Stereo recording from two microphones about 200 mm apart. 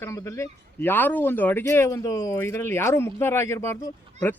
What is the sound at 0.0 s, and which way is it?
Speech, 15° left (ahead or behind).